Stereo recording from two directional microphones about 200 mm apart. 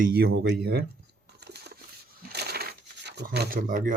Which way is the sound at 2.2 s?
50° right (ahead or behind).